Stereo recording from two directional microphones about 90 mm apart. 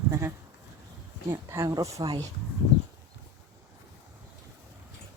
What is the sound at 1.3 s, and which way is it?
Speech, 30° right (ahead or behind).